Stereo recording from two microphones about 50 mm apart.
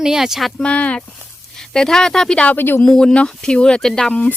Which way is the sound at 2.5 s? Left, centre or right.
Left.